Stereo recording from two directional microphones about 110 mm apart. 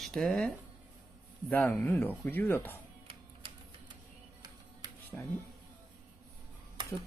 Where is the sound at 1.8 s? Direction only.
15° left (ahead or behind).